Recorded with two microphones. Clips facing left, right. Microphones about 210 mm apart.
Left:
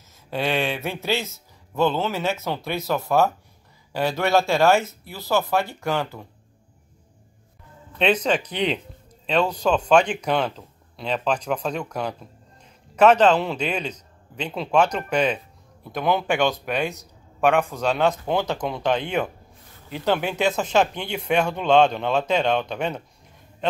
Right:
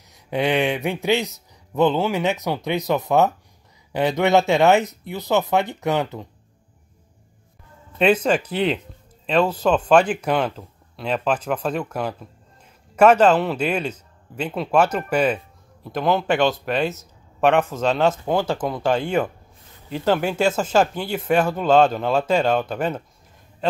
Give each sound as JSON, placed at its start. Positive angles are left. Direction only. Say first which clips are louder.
{"t": 0.1, "sound": "speech", "louder": "right 4 dB", "side_deg": -15}
{"t": 8.0, "sound": "speech", "louder": "right 3 dB", "side_deg": -5}
{"t": 17.4, "sound": "a man's voice", "louder": "right 2 dB", "side_deg": 10}
{"t": 18.3, "sound": "speech", "louder": "right 2 dB", "side_deg": -5}
{"t": 20.1, "sound": "a man's voice", "louder": "right 3 dB", "side_deg": -5}